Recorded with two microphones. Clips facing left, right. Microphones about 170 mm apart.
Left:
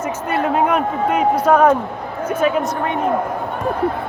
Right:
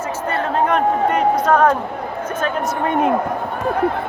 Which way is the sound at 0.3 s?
10° left (ahead or behind).